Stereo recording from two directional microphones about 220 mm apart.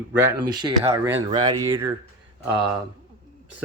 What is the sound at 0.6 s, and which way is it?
Speech, 15° right (ahead or behind).